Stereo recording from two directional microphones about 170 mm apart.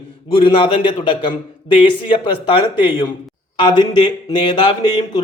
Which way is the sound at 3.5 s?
25° left (ahead or behind).